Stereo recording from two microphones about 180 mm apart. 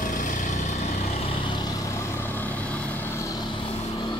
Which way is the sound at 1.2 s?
30° left (ahead or behind).